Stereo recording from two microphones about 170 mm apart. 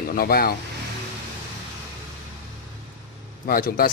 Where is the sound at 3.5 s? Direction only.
60° left (ahead or behind).